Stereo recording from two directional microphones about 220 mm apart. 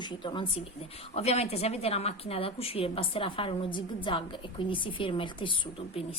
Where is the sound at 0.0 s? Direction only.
20° left (ahead or behind).